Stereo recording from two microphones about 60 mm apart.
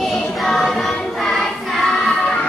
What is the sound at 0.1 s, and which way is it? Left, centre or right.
Music, centre.